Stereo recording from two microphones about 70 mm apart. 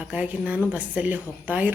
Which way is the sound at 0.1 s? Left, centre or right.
Centre.